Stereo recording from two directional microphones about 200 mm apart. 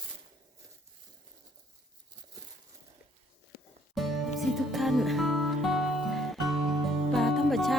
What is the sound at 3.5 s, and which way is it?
Music, 50° left (ahead or behind).